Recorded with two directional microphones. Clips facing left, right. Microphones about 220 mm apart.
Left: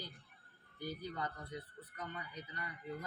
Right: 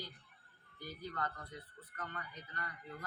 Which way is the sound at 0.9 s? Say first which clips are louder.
Even; 10° left (ahead or behind).